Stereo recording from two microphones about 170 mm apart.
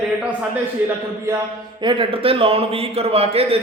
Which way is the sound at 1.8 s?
30° right (ahead or behind).